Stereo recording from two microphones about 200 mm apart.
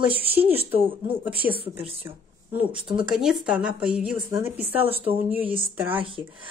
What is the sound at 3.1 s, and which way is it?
A woman's voice, centre (ahead or behind).